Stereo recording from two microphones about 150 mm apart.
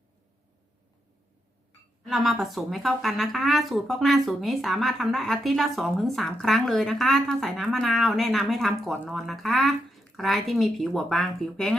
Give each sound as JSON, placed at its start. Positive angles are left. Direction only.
{"t": 2.0, "sound": "speech", "side_deg": 0}